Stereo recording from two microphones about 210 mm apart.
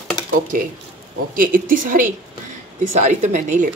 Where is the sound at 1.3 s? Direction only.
40° right (ahead or behind).